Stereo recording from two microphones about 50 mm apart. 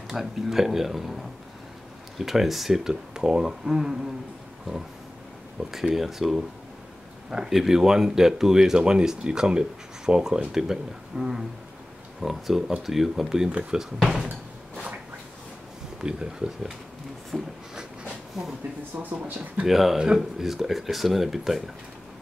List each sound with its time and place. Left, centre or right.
0.1 s speech: centre
5.7 s speech: centre
13.5 s speech: right
13.7 s speech: centre
16.0 s speech: centre
17.3 s speech: centre
18.9 s speech: centre